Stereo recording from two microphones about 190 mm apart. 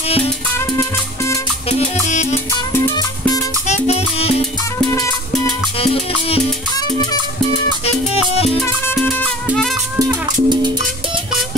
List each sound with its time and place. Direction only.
0.7 s music: 15° left (ahead or behind)
1.7 s music: 40° left (ahead or behind)
2.7 s music: 15° left (ahead or behind)
3.6 s music: 35° left (ahead or behind)
4.9 s music: 15° left (ahead or behind)
5.8 s music: 30° left (ahead or behind)
7.8 s music: 35° left (ahead or behind)
8.6 s music: 10° left (ahead or behind)
9.9 s music: 20° right (ahead or behind)